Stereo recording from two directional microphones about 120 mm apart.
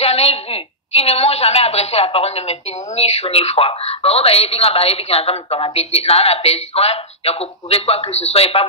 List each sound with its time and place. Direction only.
0.0 s a woman's voice: 60° left (ahead or behind)